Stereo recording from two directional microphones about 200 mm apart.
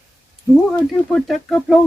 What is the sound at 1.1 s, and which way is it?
Speech, centre (ahead or behind).